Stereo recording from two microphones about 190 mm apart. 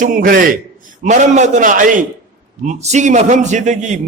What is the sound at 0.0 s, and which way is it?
A man's voice, 45° right (ahead or behind).